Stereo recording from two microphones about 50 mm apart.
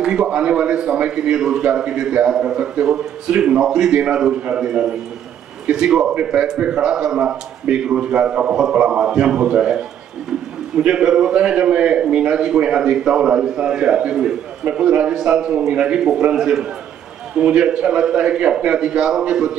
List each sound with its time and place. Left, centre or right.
0.0 s a man's voice: centre
1.3 s a man's voice: centre
10.8 s a man's voice: centre